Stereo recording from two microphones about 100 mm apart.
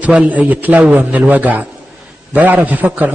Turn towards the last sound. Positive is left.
turn(degrees=-15)  # may be behind; listen again after turning